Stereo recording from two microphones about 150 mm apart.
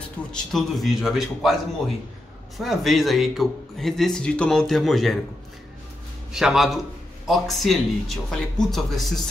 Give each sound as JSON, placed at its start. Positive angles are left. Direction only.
{"t": 0.2, "sound": "a sound", "side_deg": 10}
{"t": 0.5, "sound": "speech", "side_deg": 0}
{"t": 6.3, "sound": "speech", "side_deg": -5}